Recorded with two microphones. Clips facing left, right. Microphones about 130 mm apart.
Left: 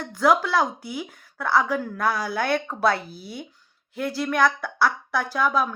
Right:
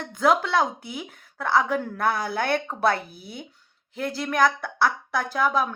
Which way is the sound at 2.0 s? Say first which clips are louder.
Left 1 dB; 55° right (ahead or behind).